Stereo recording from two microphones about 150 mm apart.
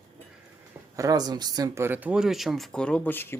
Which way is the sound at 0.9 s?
25° right (ahead or behind).